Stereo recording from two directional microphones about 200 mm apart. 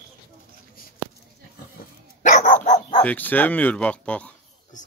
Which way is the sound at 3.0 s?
10° left (ahead or behind).